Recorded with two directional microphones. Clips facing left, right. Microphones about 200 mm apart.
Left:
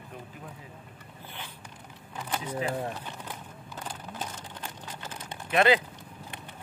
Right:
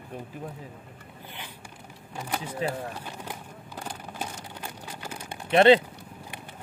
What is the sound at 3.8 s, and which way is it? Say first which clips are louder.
Vehicle: right 2 dB; 10° right (ahead or behind).